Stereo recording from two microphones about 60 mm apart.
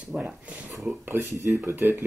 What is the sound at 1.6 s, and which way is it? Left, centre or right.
Speech, right.